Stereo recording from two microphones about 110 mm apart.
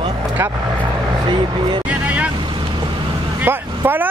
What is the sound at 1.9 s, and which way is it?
Speech, 10° right (ahead or behind).